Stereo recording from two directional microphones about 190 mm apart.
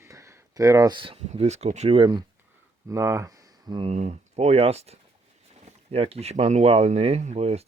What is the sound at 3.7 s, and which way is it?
Speech, 30° right (ahead or behind).